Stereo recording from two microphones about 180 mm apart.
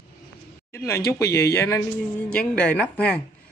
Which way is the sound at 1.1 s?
15° left (ahead or behind).